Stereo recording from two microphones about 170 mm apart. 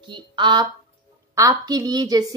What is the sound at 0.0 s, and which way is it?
A woman's voice, 30° right (ahead or behind).